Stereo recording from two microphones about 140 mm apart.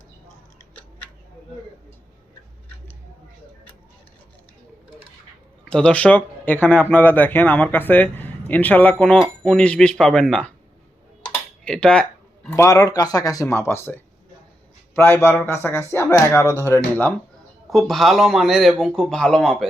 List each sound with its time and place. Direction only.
5.6 s a man's voice: 5° left (ahead or behind)
11.2 s dishes: 5° left (ahead or behind)
12.5 s speech: 25° left (ahead or behind)
17.7 s a man's voice: centre (ahead or behind)